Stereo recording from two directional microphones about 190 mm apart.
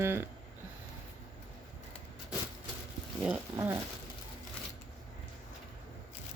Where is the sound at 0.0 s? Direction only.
10° right (ahead or behind).